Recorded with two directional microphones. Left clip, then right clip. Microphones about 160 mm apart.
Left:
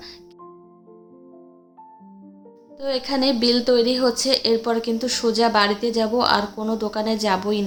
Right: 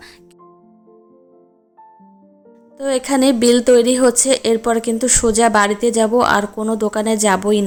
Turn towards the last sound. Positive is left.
turn(degrees=-45)  # may be behind; listen again after turning